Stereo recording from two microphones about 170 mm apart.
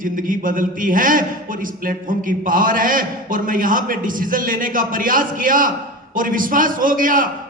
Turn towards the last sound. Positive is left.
turn(degrees=-55)  # may be behind; listen again after turning